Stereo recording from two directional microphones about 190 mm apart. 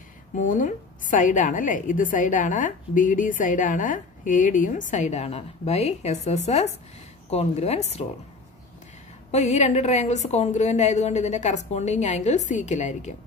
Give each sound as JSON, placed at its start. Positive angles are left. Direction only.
{"t": 0.4, "sound": "a woman's voice", "side_deg": 45}
{"t": 9.3, "sound": "a woman's voice", "side_deg": 35}